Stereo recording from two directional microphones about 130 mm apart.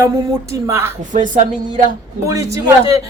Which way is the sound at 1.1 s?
75° right (ahead or behind).